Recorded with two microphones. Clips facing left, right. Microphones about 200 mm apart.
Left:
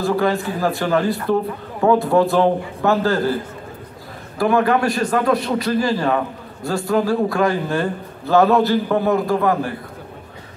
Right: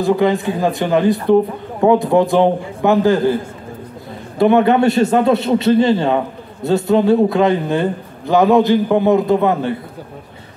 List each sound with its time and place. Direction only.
0.0 s a man's voice: 20° right (ahead or behind)
4.4 s a man's voice: 25° right (ahead or behind)